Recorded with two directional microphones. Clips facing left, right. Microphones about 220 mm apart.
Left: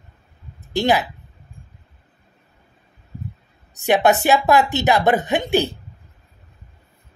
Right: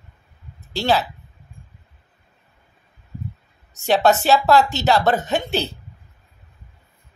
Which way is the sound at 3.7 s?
15° left (ahead or behind).